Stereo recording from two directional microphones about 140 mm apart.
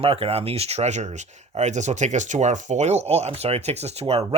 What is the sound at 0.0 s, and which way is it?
Speech, 45° right (ahead or behind).